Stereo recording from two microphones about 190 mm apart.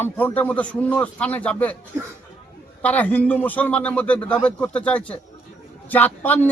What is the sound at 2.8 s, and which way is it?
A man's voice, 10° left (ahead or behind).